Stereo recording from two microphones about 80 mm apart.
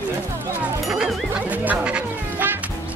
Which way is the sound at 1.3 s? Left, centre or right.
Centre.